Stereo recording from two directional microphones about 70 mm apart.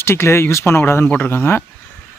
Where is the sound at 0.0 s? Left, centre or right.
Left.